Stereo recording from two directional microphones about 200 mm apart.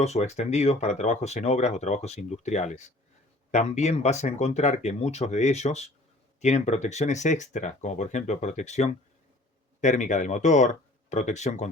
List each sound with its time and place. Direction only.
0.0 s speech: 35° left (ahead or behind)